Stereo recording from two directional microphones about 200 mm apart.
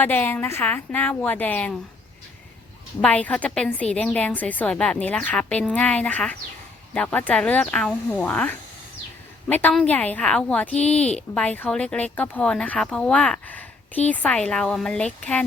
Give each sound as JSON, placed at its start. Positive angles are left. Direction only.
{"t": 0.0, "sound": "a woman's voice", "side_deg": 10}
{"t": 3.0, "sound": "a woman's voice", "side_deg": 5}